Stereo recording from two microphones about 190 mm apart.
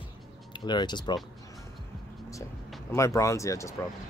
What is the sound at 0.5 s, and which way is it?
Speech, 25° left (ahead or behind).